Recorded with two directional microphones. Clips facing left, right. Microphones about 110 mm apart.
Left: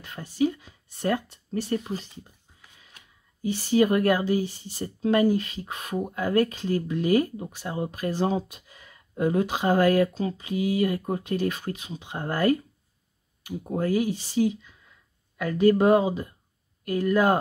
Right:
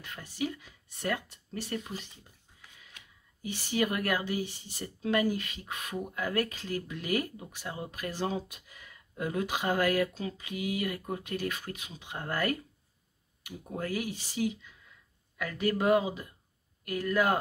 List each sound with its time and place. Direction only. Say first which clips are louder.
0.0 s speech: left 10 dB; 30° left (ahead or behind)
3.4 s speech: left 9 dB; 30° left (ahead or behind)